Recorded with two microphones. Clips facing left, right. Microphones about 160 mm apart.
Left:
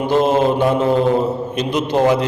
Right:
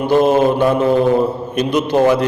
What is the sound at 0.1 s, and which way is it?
Mantra, 20° left (ahead or behind).